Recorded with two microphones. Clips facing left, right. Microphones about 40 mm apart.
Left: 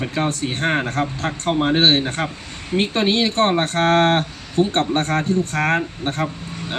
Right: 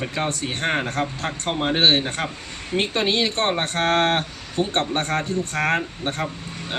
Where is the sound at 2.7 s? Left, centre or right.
Centre.